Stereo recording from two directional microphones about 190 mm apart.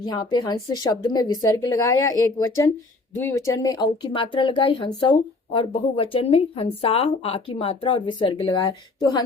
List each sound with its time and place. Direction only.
0.0 s speech: 20° left (ahead or behind)